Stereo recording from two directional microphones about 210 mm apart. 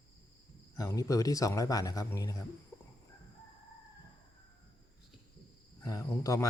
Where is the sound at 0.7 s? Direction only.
15° left (ahead or behind).